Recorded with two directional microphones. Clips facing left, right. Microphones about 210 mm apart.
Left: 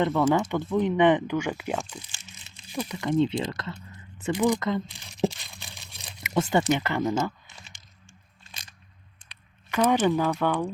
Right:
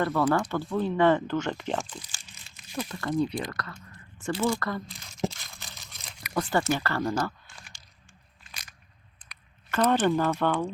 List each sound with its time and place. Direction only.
0.0 s speech: 20° left (ahead or behind)
2.0 s crumpling: 25° left (ahead or behind)
2.7 s speech: 20° left (ahead or behind)
3.9 s crumpling: 15° left (ahead or behind)
7.2 s typing: 20° left (ahead or behind)
8.4 s biting: 25° left (ahead or behind)
9.7 s speech: 10° left (ahead or behind)